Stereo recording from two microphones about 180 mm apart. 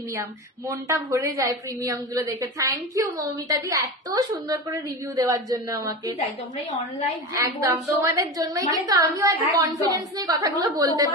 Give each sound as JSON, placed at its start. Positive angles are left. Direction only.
{"t": 0.1, "sound": "a woman's voice", "side_deg": -15}
{"t": 7.3, "sound": "a woman's voice", "side_deg": -15}